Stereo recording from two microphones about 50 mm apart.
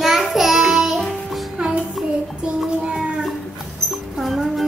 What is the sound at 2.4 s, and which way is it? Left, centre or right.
Child singing, centre.